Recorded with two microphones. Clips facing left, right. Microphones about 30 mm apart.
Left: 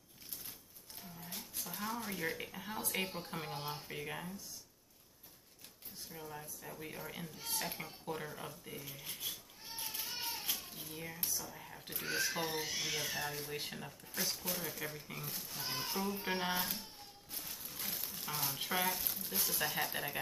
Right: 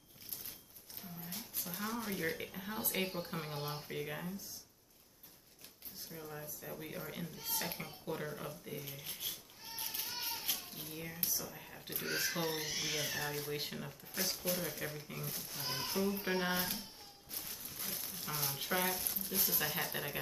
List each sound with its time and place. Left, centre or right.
1.3 s speech: centre
6.1 s speech: centre
13.1 s speech: centre
13.7 s speech: centre
17.3 s music: centre
17.8 s speech: centre